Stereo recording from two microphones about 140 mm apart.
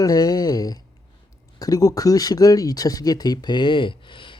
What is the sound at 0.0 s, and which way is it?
Speech, 25° left (ahead or behind).